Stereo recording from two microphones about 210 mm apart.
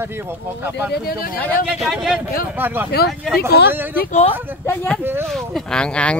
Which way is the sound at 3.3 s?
50° left (ahead or behind).